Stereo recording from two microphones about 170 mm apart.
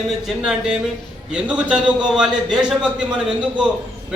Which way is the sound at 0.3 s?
5° right (ahead or behind).